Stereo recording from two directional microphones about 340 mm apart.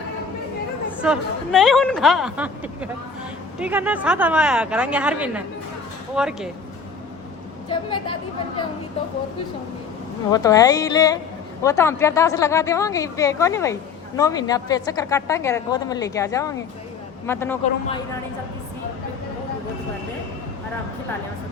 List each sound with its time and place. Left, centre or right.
1.0 s speech: centre
7.7 s a woman's voice: centre
10.3 s a woman's voice: centre
17.6 s a woman's voice: centre